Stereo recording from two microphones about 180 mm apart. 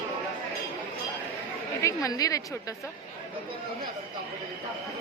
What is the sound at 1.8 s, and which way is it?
Speech, 15° left (ahead or behind).